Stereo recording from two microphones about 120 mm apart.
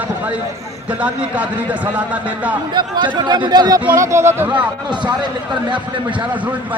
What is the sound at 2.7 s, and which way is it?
Speech, 40° right (ahead or behind).